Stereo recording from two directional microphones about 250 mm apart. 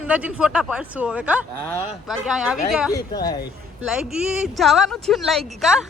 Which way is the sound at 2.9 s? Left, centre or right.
Centre.